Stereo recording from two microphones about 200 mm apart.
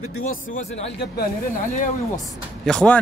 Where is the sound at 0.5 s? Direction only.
35° left (ahead or behind).